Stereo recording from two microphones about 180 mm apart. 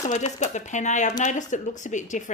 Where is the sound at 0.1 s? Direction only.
40° left (ahead or behind).